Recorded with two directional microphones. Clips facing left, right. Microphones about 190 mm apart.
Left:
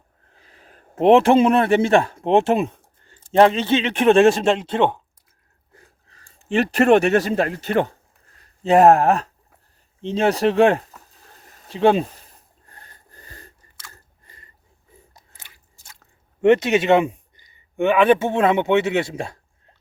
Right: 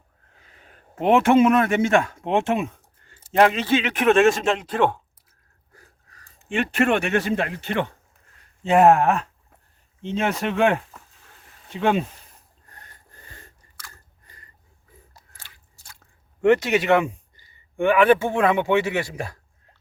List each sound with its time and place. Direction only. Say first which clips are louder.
0.3 s a man's voice: left 3 dB; 35° left (ahead or behind)
10.0 s a sound: left 6 dB; 35° left (ahead or behind)
12.7 s wheeze: left 2 dB; 35° left (ahead or behind)
15.1 s scissors: even; 20° left (ahead or behind)
16.4 s speech: left 3 dB; 20° left (ahead or behind)